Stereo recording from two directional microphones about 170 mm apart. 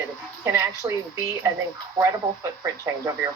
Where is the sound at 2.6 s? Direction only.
20° right (ahead or behind).